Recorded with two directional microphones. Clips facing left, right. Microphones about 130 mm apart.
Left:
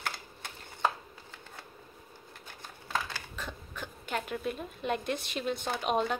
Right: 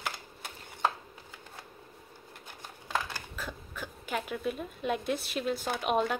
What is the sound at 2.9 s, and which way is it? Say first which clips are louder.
Speech: right 1 dB; 5° right (ahead or behind).